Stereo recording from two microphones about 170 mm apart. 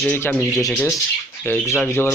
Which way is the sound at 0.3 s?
Centre (ahead or behind).